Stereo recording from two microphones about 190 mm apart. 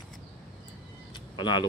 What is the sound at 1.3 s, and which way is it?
Speech, 25° left (ahead or behind).